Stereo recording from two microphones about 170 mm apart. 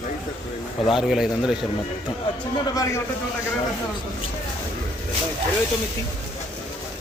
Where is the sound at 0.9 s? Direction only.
5° right (ahead or behind).